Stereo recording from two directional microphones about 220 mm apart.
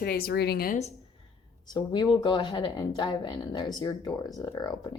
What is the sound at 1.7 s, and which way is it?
Speech, 20° left (ahead or behind).